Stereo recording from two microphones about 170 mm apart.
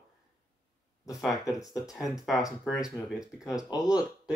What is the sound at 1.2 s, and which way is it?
Speech, 5° right (ahead or behind).